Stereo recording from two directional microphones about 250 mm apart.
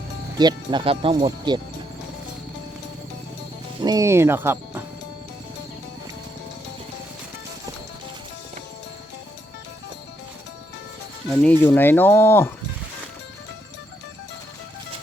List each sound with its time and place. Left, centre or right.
0.3 s speech: centre
3.8 s speech: centre
11.4 s speech: centre